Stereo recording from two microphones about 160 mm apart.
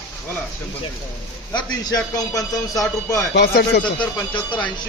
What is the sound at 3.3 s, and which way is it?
Speech, 85° left.